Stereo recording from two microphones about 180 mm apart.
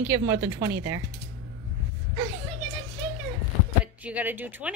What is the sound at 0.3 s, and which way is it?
Speech, 15° right (ahead or behind).